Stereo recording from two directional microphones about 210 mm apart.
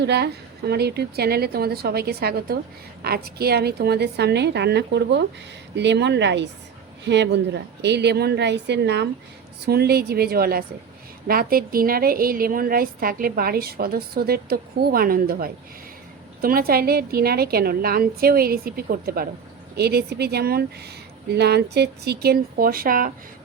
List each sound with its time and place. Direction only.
0.0 s a woman's voice: 55° right (ahead or behind)